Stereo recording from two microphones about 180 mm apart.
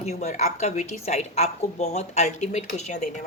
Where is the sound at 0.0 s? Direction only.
40° left (ahead or behind).